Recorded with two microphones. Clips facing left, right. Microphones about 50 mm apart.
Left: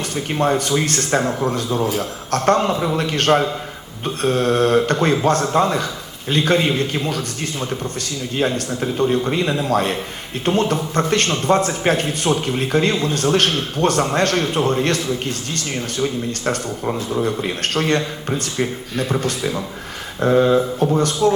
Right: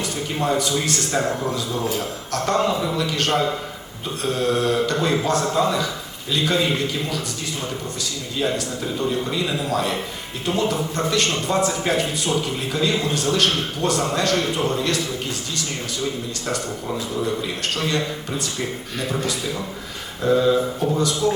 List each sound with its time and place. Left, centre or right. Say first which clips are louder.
0.3 s speech: left 4 dB; left
8.4 s speech: left 3 dB; left
16.5 s speech: left 3 dB; left
20.2 s a sound: left 3 dB; left